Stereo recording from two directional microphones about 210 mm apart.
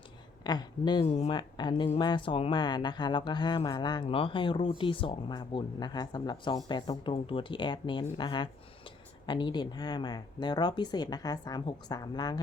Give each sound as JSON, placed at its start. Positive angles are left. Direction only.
{"t": 0.4, "sound": "speech", "side_deg": 20}
{"t": 1.0, "sound": "speech", "side_deg": 30}
{"t": 1.3, "sound": "speech", "side_deg": 20}